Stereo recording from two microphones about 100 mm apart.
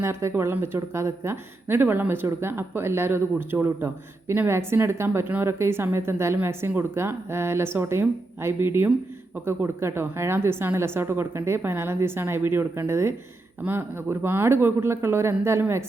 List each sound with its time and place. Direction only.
0.0 s speech: 25° right (ahead or behind)